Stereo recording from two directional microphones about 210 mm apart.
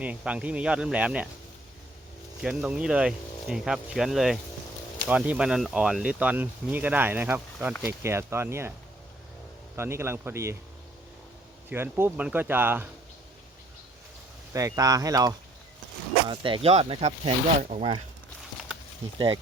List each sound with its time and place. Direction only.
0.0 s speech: 5° right (ahead or behind)
2.4 s speech: 5° right (ahead or behind)
9.7 s speech: 10° right (ahead or behind)
11.7 s speech: 10° right (ahead or behind)
14.5 s speech: 15° right (ahead or behind)